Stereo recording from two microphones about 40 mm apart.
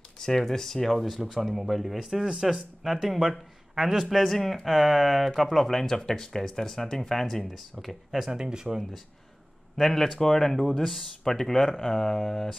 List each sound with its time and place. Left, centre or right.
0.2 s speech: centre
0.9 s speech: centre
4.6 s speech: centre
8.3 s speech: centre
9.8 s speech: centre